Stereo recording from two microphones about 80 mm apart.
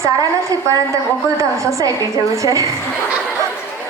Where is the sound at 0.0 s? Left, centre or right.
Right.